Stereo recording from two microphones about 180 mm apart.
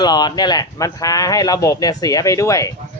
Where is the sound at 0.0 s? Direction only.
25° left (ahead or behind).